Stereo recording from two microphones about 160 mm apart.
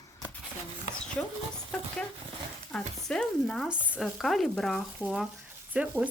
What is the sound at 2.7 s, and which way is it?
Speech, 5° left (ahead or behind).